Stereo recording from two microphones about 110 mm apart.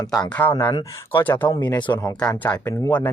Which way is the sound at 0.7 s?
45° left (ahead or behind).